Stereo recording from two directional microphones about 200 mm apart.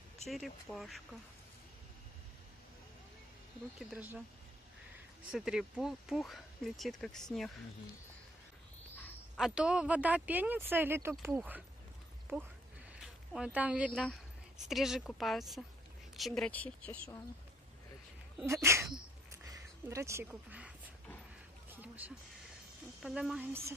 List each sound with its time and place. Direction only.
0.3 s speech: centre (ahead or behind)
5.3 s speech: 5° right (ahead or behind)
9.4 s speech: 5° right (ahead or behind)
18.4 s speech: 15° right (ahead or behind)
19.5 s a sound: 15° right (ahead or behind)
23.0 s speech: 5° right (ahead or behind)